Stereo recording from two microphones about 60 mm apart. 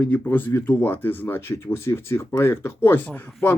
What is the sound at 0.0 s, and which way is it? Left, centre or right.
Speech, left.